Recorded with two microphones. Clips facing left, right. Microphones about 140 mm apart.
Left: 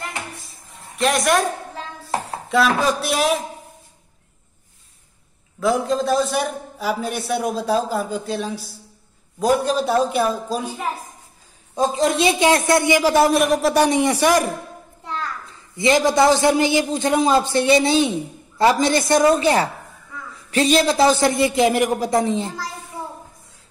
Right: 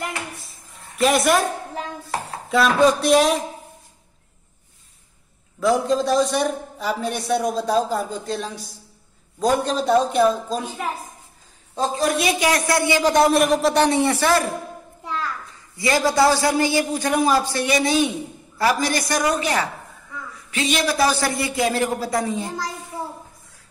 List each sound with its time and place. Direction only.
0.4 s a sound: centre (ahead or behind)
2.5 s a man's voice: centre (ahead or behind)
5.6 s a man's voice: centre (ahead or behind); by 13.0 s 20° left (ahead or behind)
13.0 s a man's voice: 5° left (ahead or behind)
13.8 s a man's voice: 15° left (ahead or behind)
15.8 s a man's voice: 20° left (ahead or behind); by 20.8 s 35° left (ahead or behind)
20.8 s a man's voice: 25° left (ahead or behind)